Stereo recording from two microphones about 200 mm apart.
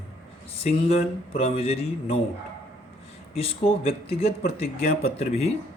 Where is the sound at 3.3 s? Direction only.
30° left (ahead or behind).